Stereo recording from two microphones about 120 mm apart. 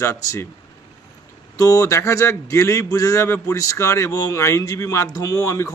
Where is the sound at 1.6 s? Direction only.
30° left (ahead or behind).